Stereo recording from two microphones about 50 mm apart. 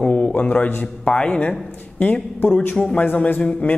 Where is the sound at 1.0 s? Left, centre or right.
Centre.